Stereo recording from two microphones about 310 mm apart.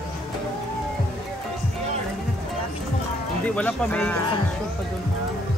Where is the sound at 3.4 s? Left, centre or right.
Centre.